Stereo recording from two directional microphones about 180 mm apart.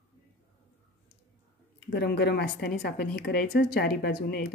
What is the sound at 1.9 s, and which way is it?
A woman's voice, 65° left (ahead or behind).